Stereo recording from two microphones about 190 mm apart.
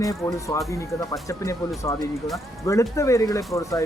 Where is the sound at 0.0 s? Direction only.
20° left (ahead or behind).